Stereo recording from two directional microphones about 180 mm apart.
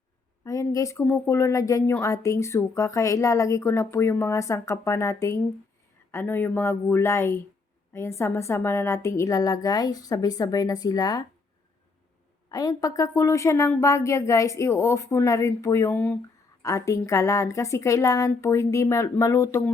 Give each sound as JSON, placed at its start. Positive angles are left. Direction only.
{"t": 0.4, "sound": "a woman's voice", "side_deg": 15}
{"t": 12.5, "sound": "speech", "side_deg": 20}